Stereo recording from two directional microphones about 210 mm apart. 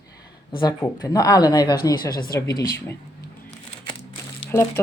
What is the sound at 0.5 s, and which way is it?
Speech, 20° left (ahead or behind).